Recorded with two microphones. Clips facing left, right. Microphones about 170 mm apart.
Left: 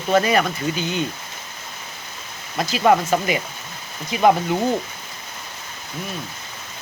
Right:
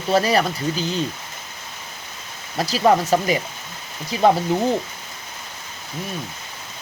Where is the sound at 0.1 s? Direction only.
35° right (ahead or behind).